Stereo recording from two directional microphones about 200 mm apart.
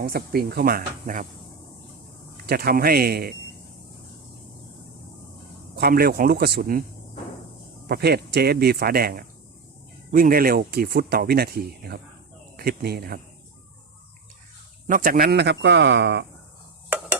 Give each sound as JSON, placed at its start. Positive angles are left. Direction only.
{"t": 0.0, "sound": "speech", "side_deg": -50}
{"t": 2.5, "sound": "speech", "side_deg": -50}
{"t": 5.7, "sound": "speech", "side_deg": -50}
{"t": 7.9, "sound": "speech", "side_deg": -55}
{"t": 14.8, "sound": "speech", "side_deg": -45}
{"t": 16.9, "sound": "a sound", "side_deg": -10}